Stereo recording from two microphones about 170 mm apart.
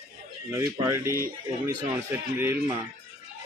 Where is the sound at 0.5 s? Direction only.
15° right (ahead or behind).